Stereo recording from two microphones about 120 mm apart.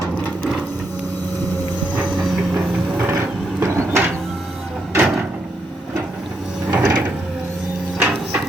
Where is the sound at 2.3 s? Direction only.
5° right (ahead or behind).